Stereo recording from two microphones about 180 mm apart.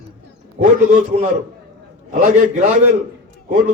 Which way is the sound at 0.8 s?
45° right (ahead or behind).